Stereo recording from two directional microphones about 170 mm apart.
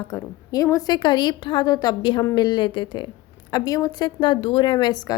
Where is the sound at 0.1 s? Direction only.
20° left (ahead or behind).